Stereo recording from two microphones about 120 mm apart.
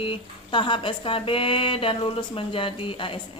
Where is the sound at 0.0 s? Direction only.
45° left (ahead or behind).